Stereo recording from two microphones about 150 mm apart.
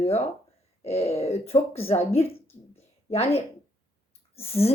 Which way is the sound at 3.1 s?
45° left (ahead or behind).